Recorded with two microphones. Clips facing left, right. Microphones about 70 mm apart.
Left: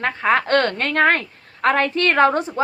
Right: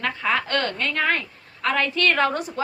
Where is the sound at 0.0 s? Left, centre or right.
Left.